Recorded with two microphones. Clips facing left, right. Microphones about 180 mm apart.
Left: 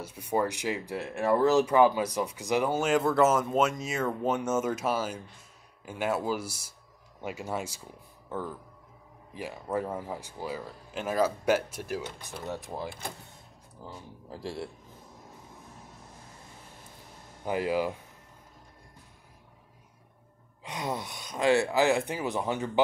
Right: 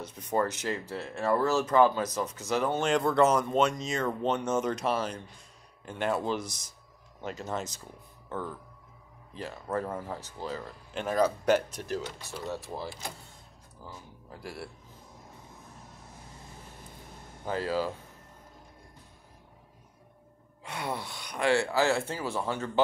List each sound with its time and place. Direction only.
0.0 s speech: 10° left (ahead or behind)
13.8 s speech: 30° left (ahead or behind)
17.5 s speech: 15° left (ahead or behind)
20.6 s speech: 20° left (ahead or behind)